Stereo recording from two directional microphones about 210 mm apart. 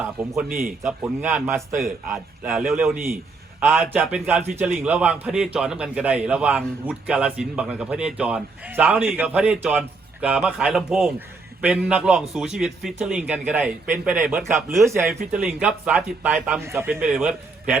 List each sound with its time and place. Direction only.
0.4 s speech: 45° right (ahead or behind)
0.9 s a man's voice: 5° right (ahead or behind)